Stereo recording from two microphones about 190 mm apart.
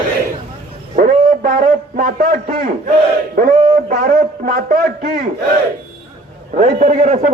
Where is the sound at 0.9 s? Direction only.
45° right (ahead or behind).